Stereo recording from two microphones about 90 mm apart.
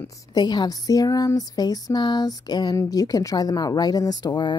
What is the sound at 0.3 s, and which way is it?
Speech, 55° left (ahead or behind).